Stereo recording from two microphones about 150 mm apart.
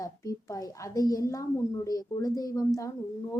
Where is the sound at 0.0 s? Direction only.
25° left (ahead or behind).